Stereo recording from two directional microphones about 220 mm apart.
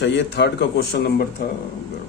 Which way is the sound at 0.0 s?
50° left (ahead or behind).